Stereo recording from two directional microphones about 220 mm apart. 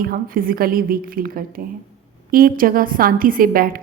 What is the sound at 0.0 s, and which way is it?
A woman's voice, 40° right (ahead or behind).